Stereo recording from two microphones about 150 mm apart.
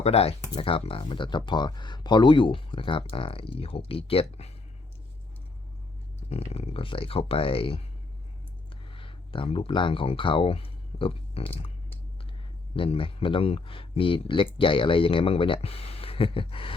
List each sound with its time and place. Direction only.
0.0 s speech: 40° left (ahead or behind)
6.5 s speech: 40° left (ahead or behind)
8.9 s speech: 35° left (ahead or behind)
12.7 s speech: 35° left (ahead or behind)